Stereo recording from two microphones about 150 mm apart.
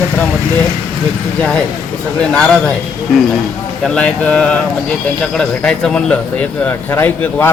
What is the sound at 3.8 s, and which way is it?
Speech, 10° left (ahead or behind).